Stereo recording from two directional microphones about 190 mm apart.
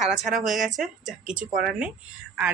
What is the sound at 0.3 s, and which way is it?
Speech, centre (ahead or behind).